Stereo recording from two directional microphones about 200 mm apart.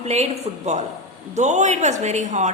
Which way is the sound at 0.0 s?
35° right (ahead or behind).